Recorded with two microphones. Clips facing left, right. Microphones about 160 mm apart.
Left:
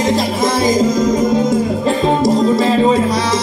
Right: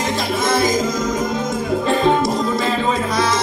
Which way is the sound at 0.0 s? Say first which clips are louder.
Left 5 dB; 35° left (ahead or behind).